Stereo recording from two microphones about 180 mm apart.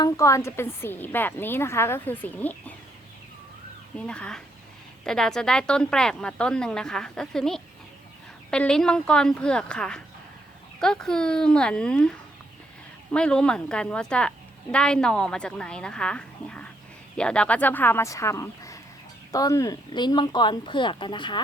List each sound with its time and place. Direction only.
0.0 s a woman's voice: 15° left (ahead or behind)
3.9 s a woman's voice: 5° left (ahead or behind); by 21.4 s 25° left (ahead or behind)